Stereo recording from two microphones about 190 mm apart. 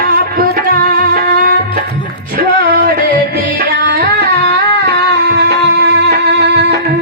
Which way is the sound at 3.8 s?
60° right (ahead or behind).